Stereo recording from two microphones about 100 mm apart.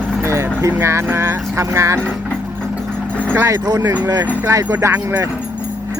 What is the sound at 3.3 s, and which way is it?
Speech, 30° right (ahead or behind).